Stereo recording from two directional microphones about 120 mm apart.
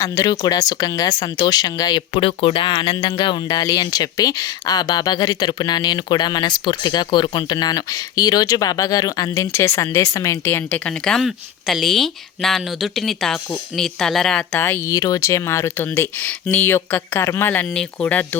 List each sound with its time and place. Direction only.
0.0 s speech: 30° left (ahead or behind)
10.8 s speech: 5° left (ahead or behind)
14.6 s speech: 20° left (ahead or behind)